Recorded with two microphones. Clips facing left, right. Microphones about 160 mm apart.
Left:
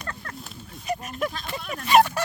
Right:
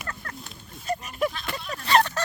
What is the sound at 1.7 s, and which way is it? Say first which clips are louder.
Speech: left 4 dB; 15° left (ahead or behind).